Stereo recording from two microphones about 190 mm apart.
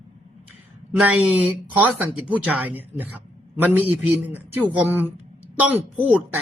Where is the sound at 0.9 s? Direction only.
5° right (ahead or behind).